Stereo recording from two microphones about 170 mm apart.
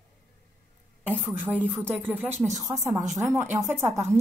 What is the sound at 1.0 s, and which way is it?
Speech, 5° left (ahead or behind).